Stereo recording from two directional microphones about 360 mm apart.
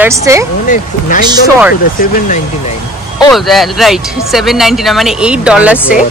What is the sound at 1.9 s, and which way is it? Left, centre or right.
Speech, left.